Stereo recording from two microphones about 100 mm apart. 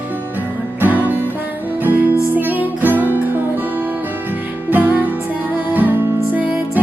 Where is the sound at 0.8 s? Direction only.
15° right (ahead or behind).